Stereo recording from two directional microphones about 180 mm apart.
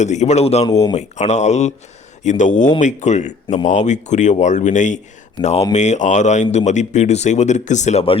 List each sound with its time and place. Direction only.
0.0 s a man's voice: 40° left (ahead or behind)